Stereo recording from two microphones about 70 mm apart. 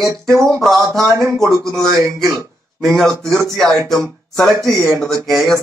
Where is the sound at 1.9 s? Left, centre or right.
Right.